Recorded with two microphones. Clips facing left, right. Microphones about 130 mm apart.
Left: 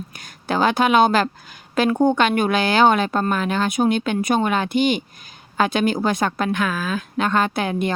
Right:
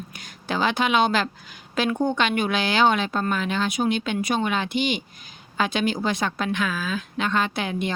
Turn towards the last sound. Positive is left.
turn(degrees=50)  # may be behind; listen again after turning